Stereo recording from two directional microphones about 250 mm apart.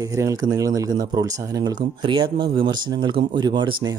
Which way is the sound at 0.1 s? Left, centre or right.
Centre.